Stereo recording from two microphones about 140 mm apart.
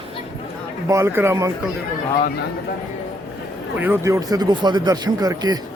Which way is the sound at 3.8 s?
15° right (ahead or behind).